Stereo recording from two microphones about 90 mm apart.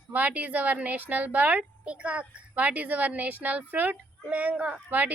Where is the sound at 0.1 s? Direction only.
20° right (ahead or behind).